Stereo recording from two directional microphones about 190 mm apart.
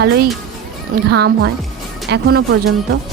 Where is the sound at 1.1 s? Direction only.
65° right (ahead or behind).